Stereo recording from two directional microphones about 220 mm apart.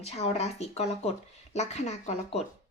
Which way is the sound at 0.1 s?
30° left (ahead or behind).